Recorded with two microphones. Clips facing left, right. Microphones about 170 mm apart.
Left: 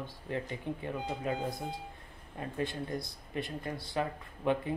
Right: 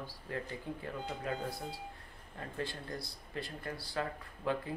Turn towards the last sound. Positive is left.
turn(degrees=20)  # may be behind; listen again after turning